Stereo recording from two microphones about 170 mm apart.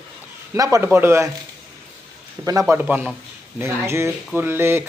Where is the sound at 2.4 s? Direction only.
20° right (ahead or behind).